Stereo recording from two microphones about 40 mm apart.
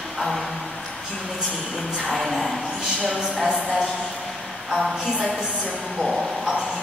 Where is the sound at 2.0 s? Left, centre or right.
Centre.